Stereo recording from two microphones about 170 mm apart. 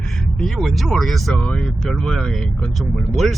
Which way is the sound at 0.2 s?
5° left (ahead or behind).